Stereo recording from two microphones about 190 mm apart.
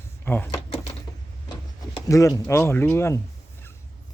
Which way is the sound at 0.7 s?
30° left (ahead or behind).